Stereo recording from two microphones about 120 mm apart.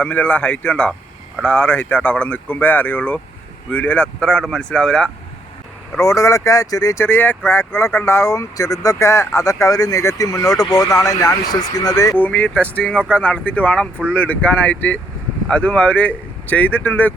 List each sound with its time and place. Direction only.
0.0 s speech: 10° left (ahead or behind)
6.0 s speech: 25° left (ahead or behind)
12.1 s speech: 10° left (ahead or behind)